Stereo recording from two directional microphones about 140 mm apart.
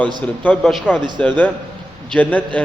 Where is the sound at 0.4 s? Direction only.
5° left (ahead or behind).